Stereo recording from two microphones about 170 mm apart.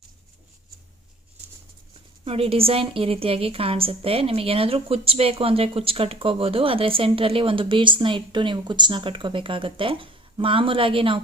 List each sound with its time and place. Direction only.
2.2 s a woman's voice: 35° right (ahead or behind)